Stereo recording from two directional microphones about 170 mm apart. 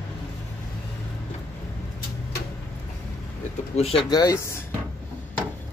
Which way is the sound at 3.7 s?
35° left (ahead or behind).